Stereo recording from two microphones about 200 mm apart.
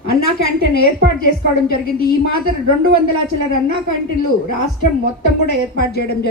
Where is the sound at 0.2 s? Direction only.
50° left (ahead or behind).